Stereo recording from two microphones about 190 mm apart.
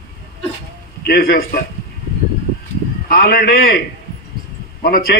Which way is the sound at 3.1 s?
50° left (ahead or behind).